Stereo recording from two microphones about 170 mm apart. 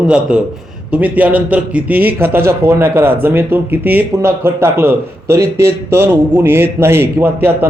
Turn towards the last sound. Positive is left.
turn(degrees=-10)  # may be behind; listen again after turning